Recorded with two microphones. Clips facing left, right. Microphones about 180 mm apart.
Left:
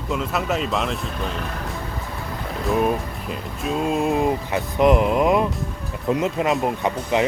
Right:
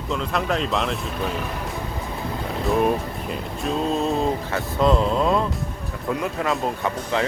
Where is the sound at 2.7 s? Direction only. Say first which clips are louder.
Even; centre (ahead or behind).